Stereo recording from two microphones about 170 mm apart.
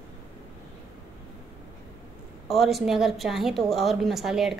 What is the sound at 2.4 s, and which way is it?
A woman's voice, centre (ahead or behind).